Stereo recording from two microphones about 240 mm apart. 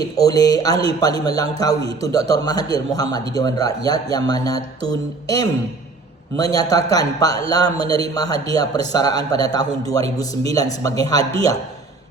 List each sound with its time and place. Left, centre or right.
0.2 s speech: centre
6.5 s speech: centre